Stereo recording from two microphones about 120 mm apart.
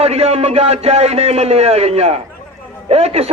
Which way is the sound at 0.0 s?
60° right (ahead or behind).